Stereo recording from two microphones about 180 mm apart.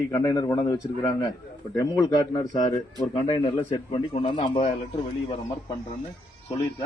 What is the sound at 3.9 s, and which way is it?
Speech, 30° left (ahead or behind).